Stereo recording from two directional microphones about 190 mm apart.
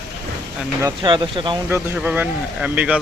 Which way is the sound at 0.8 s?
25° right (ahead or behind).